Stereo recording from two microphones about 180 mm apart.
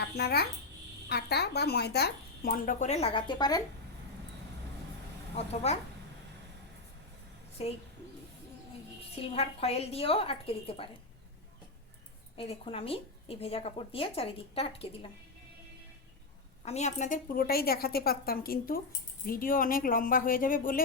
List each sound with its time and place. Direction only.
0.2 s a woman's voice: 65° left (ahead or behind); by 3.6 s 20° left (ahead or behind)
5.6 s speech: 35° left (ahead or behind)
7.6 s speech: 35° left (ahead or behind)
9.1 s speech: 35° left (ahead or behind)
12.4 s speech: 30° left (ahead or behind)
16.6 s a woman's voice: 40° left (ahead or behind)